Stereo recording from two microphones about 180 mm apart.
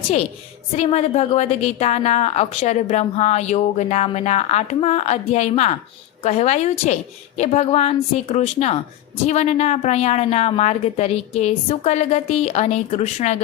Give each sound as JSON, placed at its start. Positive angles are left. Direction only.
{"t": 0.8, "sound": "a woman's voice", "side_deg": 35}